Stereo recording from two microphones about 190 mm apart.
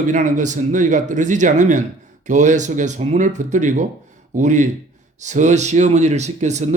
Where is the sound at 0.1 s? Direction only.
40° right (ahead or behind).